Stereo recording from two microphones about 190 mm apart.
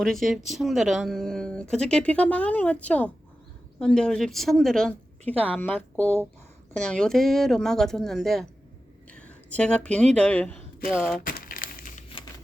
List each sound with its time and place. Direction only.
0.0 s a woman's voice: centre (ahead or behind)
11.2 s crumpling: 50° left (ahead or behind)